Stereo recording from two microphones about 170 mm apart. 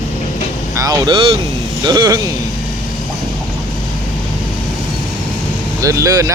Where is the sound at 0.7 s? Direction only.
20° right (ahead or behind).